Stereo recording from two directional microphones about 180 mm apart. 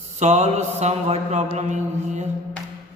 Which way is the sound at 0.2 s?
40° right (ahead or behind).